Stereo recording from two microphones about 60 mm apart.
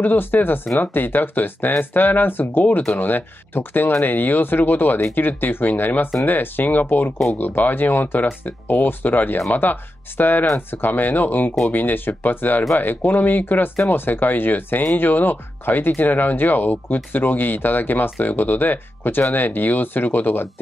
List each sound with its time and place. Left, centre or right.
0.0 s speech: left